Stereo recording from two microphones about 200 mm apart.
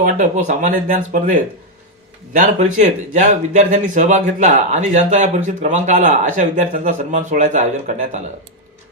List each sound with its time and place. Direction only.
0.0 s speech: 40° right (ahead or behind)